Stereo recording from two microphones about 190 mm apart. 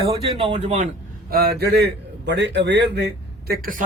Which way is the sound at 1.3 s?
55° right (ahead or behind).